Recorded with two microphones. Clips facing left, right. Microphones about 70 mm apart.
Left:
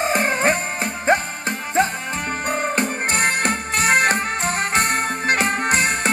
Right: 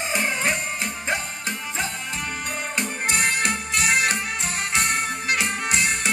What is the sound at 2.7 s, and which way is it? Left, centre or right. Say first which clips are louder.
Music: left 5 dB; left.